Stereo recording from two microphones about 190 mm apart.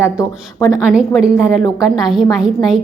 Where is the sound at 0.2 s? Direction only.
20° left (ahead or behind).